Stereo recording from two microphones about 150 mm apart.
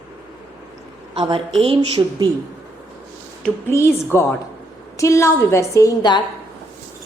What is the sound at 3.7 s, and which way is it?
A woman's voice, 15° left (ahead or behind).